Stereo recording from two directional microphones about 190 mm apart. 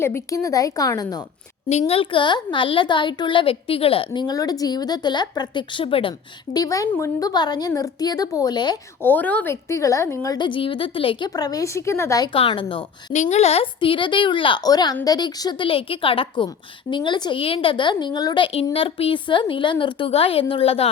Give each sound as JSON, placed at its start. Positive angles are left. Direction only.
{"t": 0.0, "sound": "a woman's voice", "side_deg": 15}
{"t": 9.0, "sound": "a woman's voice", "side_deg": 10}
{"t": 13.1, "sound": "a woman's voice", "side_deg": 35}